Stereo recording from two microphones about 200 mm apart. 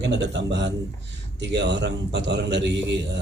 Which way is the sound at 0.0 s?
60° right (ahead or behind).